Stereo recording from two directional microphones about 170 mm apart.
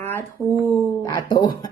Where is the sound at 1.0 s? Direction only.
20° left (ahead or behind).